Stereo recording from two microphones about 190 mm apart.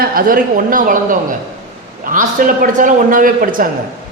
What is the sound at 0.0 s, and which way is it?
Speech, 50° right (ahead or behind).